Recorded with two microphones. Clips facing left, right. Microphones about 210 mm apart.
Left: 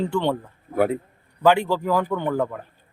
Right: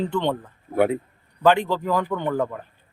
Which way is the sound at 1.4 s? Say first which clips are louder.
Even; 10° left (ahead or behind).